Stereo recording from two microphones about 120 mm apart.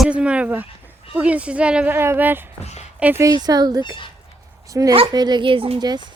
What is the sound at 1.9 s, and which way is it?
Speech, 20° right (ahead or behind).